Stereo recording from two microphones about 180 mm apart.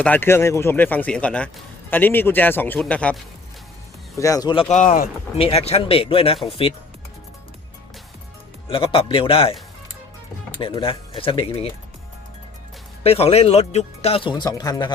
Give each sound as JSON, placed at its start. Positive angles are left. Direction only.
{"t": 0.0, "sound": "speech", "side_deg": 10}
{"t": 4.2, "sound": "speech", "side_deg": 20}
{"t": 4.7, "sound": "speech", "side_deg": 45}
{"t": 5.4, "sound": "speech", "side_deg": 35}
{"t": 8.6, "sound": "speech", "side_deg": 30}
{"t": 10.6, "sound": "speech", "side_deg": 30}
{"t": 13.0, "sound": "speech", "side_deg": 35}